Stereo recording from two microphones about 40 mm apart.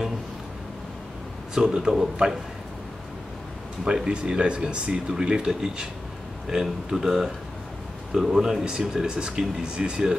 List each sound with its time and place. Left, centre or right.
1.5 s speech: centre
3.8 s speech: right
9.1 s speech: right